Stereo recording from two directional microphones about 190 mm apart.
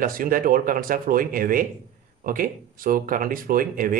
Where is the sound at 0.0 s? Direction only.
50° right (ahead or behind).